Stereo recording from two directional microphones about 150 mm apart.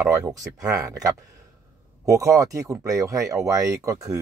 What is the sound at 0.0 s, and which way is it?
Speech, 25° right (ahead or behind).